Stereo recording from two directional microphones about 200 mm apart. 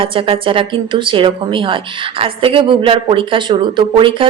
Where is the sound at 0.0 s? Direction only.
25° right (ahead or behind).